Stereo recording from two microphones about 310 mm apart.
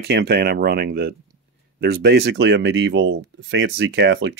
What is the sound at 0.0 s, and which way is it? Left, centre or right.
Speech, right.